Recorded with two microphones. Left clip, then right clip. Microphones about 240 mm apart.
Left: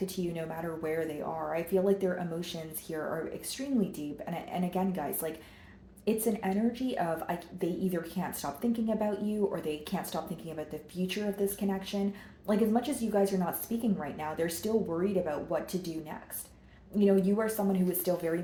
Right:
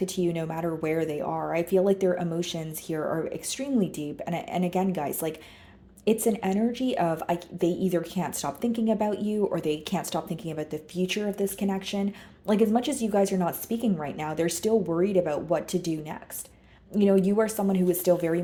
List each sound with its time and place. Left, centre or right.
0.0 s speech: right